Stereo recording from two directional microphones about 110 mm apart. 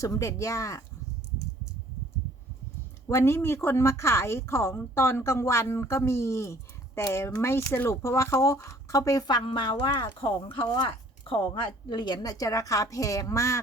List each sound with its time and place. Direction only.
0.0 s a woman's voice: 30° left (ahead or behind)
3.1 s a woman's voice: 25° left (ahead or behind)
9.5 s a woman's voice: 50° left (ahead or behind); by 13.6 s 30° left (ahead or behind)